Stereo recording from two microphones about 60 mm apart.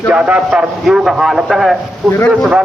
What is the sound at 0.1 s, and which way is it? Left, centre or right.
Speech, centre.